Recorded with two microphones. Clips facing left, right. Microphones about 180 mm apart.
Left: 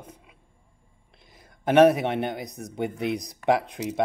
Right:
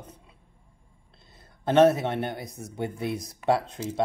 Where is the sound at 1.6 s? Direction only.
10° left (ahead or behind).